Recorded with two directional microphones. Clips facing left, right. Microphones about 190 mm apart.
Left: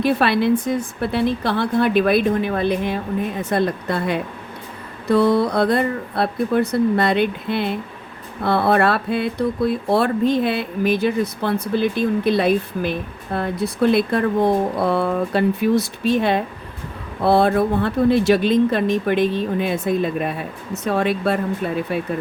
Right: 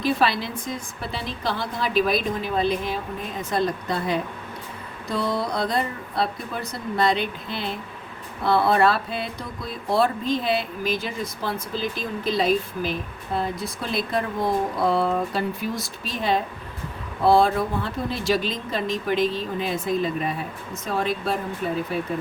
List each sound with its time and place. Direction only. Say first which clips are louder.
0.0 s speech: left 6 dB; 60° left (ahead or behind)